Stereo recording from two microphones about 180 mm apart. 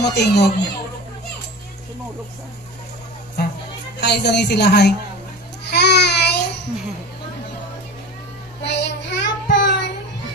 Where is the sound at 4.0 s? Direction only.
70° left (ahead or behind).